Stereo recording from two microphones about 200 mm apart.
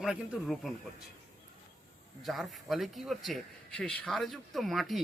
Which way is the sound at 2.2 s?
Centre (ahead or behind).